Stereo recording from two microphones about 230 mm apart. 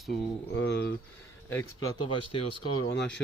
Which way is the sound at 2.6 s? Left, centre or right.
Left.